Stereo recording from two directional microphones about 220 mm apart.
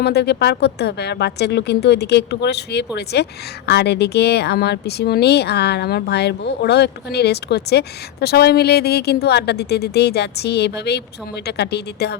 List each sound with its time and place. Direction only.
0.0 s speech: 50° left (ahead or behind)